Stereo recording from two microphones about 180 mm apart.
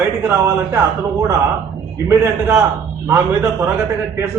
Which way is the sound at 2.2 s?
15° right (ahead or behind).